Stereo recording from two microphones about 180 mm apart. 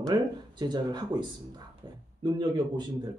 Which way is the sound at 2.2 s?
25° right (ahead or behind).